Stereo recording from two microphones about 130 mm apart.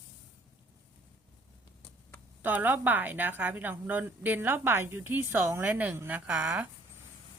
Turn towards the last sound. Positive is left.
turn(degrees=-15)  # may be behind; listen again after turning